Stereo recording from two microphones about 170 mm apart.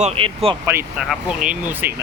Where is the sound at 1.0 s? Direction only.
5° right (ahead or behind).